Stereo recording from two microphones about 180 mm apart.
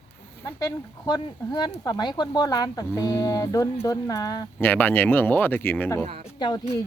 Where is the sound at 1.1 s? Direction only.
20° left (ahead or behind).